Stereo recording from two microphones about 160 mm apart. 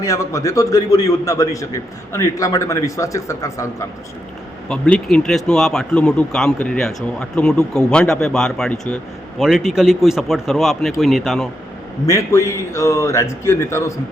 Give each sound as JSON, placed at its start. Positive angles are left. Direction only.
{"t": 0.0, "sound": "a man's voice", "side_deg": 20}
{"t": 4.7, "sound": "speech", "side_deg": 5}
{"t": 12.0, "sound": "speech", "side_deg": 20}